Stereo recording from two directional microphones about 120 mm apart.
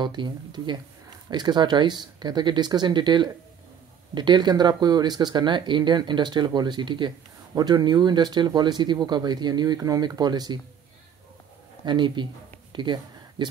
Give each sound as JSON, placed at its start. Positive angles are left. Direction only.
{"t": 0.0, "sound": "speech", "side_deg": -40}
{"t": 11.8, "sound": "speech", "side_deg": -40}
{"t": 12.7, "sound": "a sound", "side_deg": -40}